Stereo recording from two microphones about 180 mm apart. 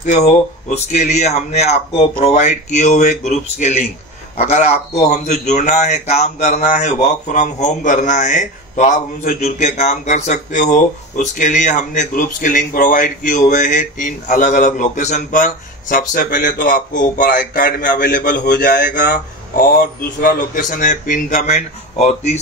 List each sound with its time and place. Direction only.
0.0 s a man's voice: 40° left (ahead or behind)